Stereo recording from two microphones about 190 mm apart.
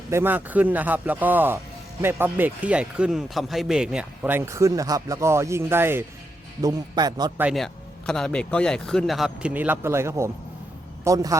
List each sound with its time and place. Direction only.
0.1 s a man's voice: 10° right (ahead or behind)
7.3 s speech: 5° right (ahead or behind)